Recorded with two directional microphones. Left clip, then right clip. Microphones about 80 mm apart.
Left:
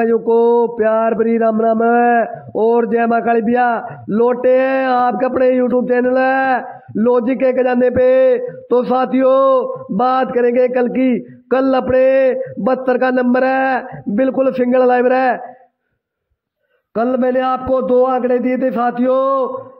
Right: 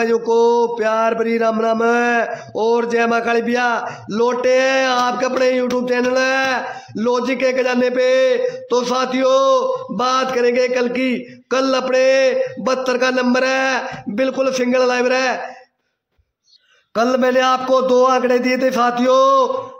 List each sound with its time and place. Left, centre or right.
0.0 s speech: left
16.9 s a man's voice: left